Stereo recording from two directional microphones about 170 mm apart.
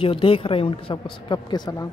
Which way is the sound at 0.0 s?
30° left (ahead or behind).